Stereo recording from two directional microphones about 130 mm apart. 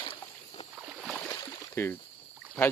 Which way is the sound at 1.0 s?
Centre (ahead or behind).